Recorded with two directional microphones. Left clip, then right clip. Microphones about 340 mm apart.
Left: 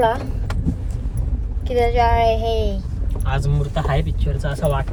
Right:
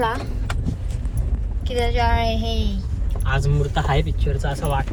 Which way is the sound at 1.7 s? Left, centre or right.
Left.